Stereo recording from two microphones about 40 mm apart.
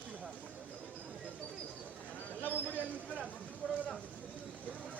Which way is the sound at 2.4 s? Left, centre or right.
Left.